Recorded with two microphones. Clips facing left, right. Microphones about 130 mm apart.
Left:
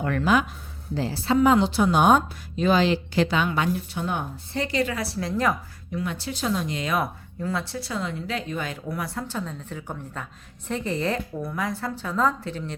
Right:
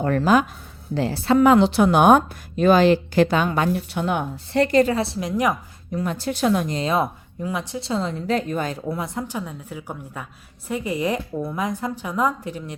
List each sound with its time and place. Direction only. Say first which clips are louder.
0.0 s a woman's voice: right 4 dB; 35° right (ahead or behind)
0.9 s a woman's voice: right 4 dB; 65° right (ahead or behind); by 3.8 s 45° right (ahead or behind)
3.8 s speech: right 5 dB; 70° right (ahead or behind)
4.7 s speech: right 8 dB; 45° right (ahead or behind)
4.9 s a woman's voice: right 4 dB; 20° right (ahead or behind)
5.9 s speech: right 5 dB; 40° right (ahead or behind); by 6.7 s 60° right (ahead or behind)
6.7 s a woman's voice: right 4 dB; 35° right (ahead or behind)
7.4 s a woman's voice: right 2 dB; 15° right (ahead or behind); by 8.8 s 40° right (ahead or behind)
8.9 s a woman's voice: right 3 dB; 20° right (ahead or behind)